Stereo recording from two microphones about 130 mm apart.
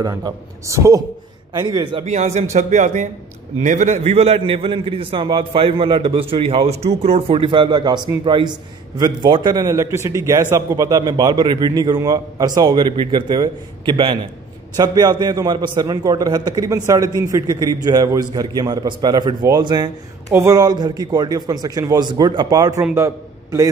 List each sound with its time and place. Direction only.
0.0 s a man's voice: 30° right (ahead or behind)
2.0 s a man's voice: 60° right (ahead or behind); by 23.7 s 25° right (ahead or behind)